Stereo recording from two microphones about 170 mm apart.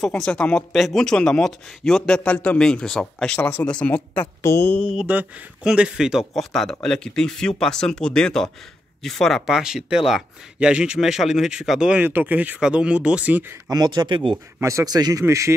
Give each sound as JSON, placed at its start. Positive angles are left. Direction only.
{"t": 0.0, "sound": "speech", "side_deg": 5}
{"t": 4.9, "sound": "speech", "side_deg": -10}
{"t": 14.6, "sound": "speech", "side_deg": -15}